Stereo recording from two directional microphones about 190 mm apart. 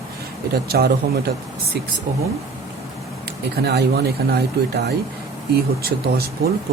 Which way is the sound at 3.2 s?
60° right (ahead or behind).